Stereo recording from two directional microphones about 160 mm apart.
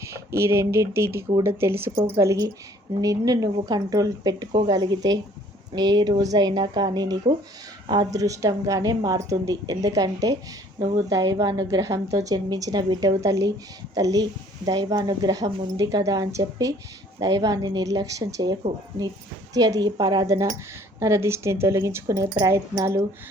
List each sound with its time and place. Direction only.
0.0 s a woman's voice: 15° right (ahead or behind)
19.5 s a woman's voice: 25° right (ahead or behind)